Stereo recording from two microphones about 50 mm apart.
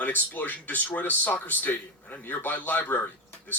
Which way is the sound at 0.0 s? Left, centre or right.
Left.